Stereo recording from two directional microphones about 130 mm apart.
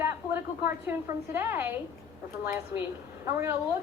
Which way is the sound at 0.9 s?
20° right (ahead or behind).